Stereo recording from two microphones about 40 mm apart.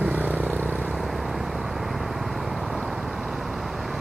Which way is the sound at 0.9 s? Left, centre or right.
Centre.